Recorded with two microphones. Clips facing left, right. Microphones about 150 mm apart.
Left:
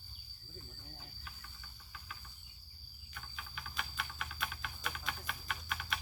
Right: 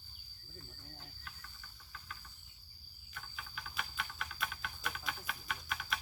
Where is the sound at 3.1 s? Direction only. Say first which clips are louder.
Even; centre (ahead or behind).